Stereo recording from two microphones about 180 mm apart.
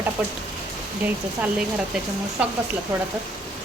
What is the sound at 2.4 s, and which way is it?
Speech, 5° right (ahead or behind).